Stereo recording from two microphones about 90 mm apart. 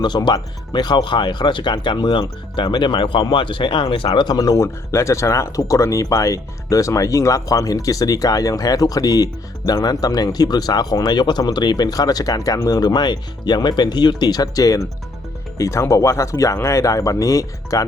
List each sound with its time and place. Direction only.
0.1 s speech: 55° left (ahead or behind)
4.4 s speech: 40° left (ahead or behind)